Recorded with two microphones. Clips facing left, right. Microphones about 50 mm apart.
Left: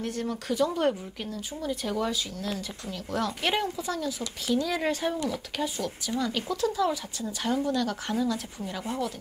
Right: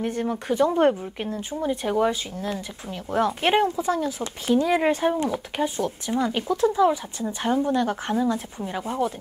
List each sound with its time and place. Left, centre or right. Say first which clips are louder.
0.0 s speech: right 5 dB; right